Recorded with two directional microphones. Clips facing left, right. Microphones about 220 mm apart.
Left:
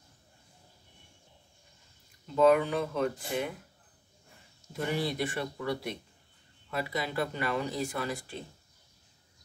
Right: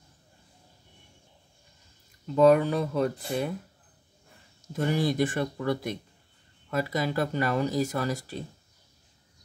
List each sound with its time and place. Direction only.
2.3 s speech: 40° right (ahead or behind)
4.7 s speech: 45° right (ahead or behind)